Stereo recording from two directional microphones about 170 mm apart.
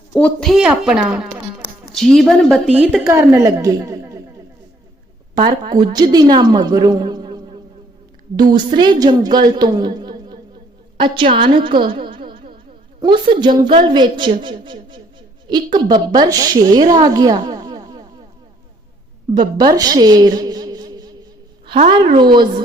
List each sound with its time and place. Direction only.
0.1 s a woman's voice: 5° left (ahead or behind)
3.0 s a woman's voice: 15° right (ahead or behind)
5.3 s a woman's voice: 25° right (ahead or behind)
8.4 s a woman's voice: 25° right (ahead or behind)
16.9 s a sound: 25° right (ahead or behind)
19.3 s a woman's voice: 25° right (ahead or behind)